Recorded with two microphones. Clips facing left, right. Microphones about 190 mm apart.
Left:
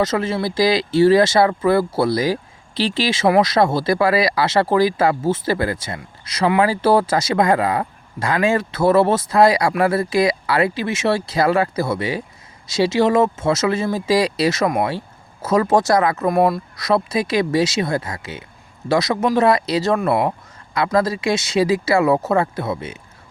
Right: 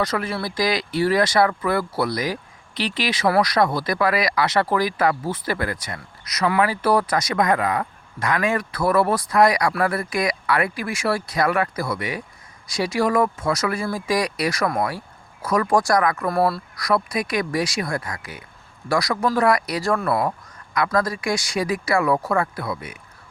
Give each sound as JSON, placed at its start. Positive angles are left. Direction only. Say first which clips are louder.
{"t": 0.0, "sound": "speech", "louder": "left 5 dB", "side_deg": 25}